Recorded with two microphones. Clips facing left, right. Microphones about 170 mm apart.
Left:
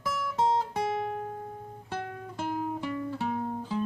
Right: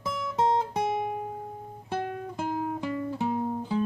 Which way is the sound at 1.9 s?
15° right (ahead or behind).